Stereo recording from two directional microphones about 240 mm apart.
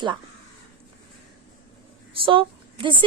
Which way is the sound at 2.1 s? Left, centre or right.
Right.